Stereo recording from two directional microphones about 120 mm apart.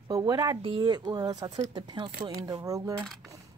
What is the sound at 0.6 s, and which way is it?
Speech, 50° right (ahead or behind).